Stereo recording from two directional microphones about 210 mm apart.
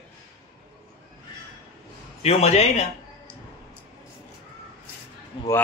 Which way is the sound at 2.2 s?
30° left (ahead or behind).